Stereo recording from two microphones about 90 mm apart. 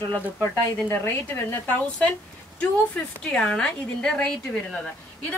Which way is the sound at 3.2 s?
10° left (ahead or behind).